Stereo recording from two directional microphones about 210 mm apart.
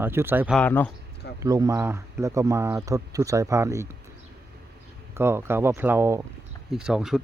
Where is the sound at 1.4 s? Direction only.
15° right (ahead or behind).